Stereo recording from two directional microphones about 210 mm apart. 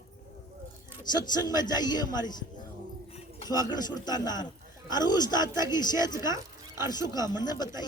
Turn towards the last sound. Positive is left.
turn(degrees=20)  # may be behind; listen again after turning